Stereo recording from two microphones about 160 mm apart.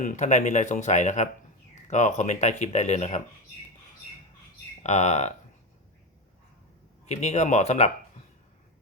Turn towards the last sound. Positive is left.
turn(degrees=40)  # may be behind; listen again after turning